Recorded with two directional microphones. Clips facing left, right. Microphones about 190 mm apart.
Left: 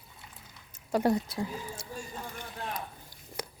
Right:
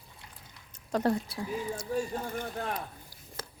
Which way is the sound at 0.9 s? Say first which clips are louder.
Left 1 dB; 10° left (ahead or behind).